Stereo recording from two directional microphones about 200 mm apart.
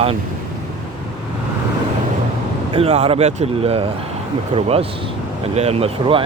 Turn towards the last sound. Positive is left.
turn(degrees=-30)  # may be behind; listen again after turning